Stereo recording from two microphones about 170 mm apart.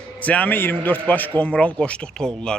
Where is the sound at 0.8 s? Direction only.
10° left (ahead or behind).